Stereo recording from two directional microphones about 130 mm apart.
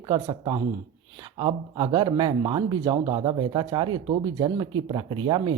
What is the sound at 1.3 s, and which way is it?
Speech, 45° right (ahead or behind).